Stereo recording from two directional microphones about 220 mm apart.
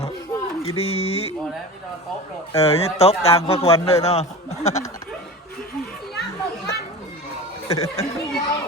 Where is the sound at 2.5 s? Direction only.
25° left (ahead or behind).